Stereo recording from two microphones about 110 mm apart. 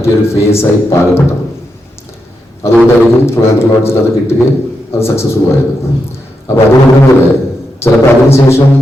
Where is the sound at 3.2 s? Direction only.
25° left (ahead or behind).